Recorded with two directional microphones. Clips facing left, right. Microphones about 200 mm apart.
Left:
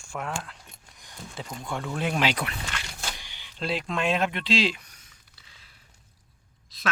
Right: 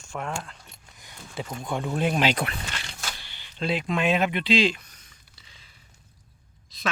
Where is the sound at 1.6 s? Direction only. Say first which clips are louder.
Right 4 dB; 20° right (ahead or behind).